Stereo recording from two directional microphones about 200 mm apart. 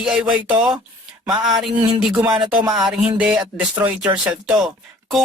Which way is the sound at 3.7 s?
10° right (ahead or behind).